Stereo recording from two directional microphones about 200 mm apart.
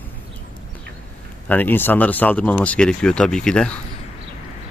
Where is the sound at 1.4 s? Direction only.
10° left (ahead or behind).